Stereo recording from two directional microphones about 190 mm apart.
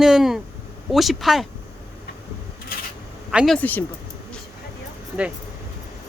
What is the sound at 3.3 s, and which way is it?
Speech, centre (ahead or behind).